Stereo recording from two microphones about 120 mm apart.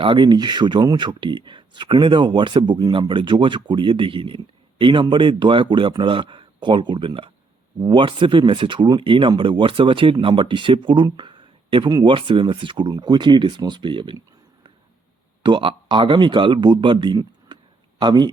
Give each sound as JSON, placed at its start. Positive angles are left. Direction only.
{"t": 0.0, "sound": "speech", "side_deg": -40}
{"t": 15.4, "sound": "speech", "side_deg": -45}